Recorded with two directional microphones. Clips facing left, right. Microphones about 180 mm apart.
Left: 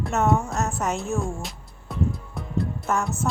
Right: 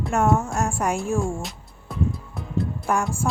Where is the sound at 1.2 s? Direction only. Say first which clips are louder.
Right 3 dB; centre (ahead or behind).